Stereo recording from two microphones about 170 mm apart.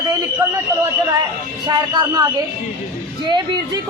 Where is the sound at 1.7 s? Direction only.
25° right (ahead or behind).